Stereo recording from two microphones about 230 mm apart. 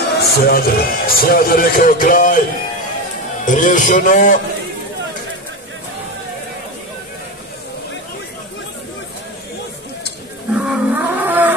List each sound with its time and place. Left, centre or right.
0.2 s a man's voice: left
3.4 s a man's voice: left
10.5 s a sound: centre